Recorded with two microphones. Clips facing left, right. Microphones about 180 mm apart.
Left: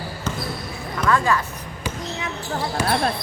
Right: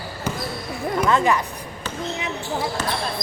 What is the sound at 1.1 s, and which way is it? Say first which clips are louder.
Music: even; 20° right (ahead or behind).